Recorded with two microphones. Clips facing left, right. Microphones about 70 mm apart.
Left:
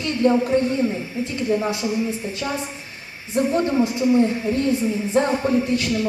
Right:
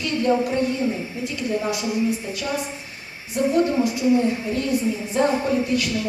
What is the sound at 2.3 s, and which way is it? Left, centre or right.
A woman's voice, left.